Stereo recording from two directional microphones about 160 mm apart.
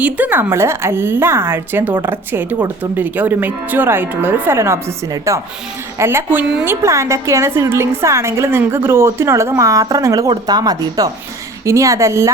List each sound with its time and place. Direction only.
0.0 s a woman's voice: 10° right (ahead or behind)
6.5 s a woman's voice: 5° right (ahead or behind)
6.8 s a woman's voice: 20° right (ahead or behind)